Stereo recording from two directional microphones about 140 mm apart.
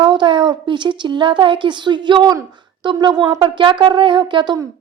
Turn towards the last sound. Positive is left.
turn(degrees=-35)  # may be behind; listen again after turning